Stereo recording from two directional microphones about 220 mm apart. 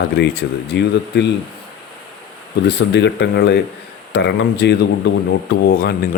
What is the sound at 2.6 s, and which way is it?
Speech, 50° left (ahead or behind).